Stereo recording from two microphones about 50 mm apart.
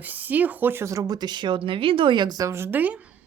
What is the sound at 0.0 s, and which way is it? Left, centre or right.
Speech, right.